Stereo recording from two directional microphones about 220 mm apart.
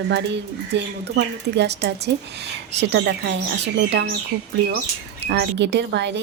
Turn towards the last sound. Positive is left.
turn(degrees=-50)  # may be behind; listen again after turning